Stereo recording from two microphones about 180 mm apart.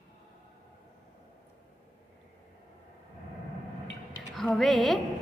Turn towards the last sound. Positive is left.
turn(degrees=0)  # may be behind; listen again after turning